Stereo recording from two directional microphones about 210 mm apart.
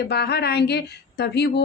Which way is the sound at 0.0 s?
50° left (ahead or behind).